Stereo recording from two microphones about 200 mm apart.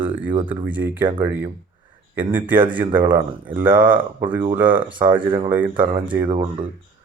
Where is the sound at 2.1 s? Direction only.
10° right (ahead or behind).